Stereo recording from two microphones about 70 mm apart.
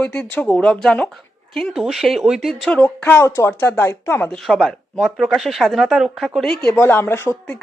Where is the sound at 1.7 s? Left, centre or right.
Centre.